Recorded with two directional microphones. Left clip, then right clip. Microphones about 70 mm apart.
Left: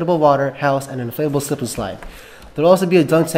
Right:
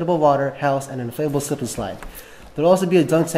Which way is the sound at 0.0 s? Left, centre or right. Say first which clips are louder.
Left 3 dB; left.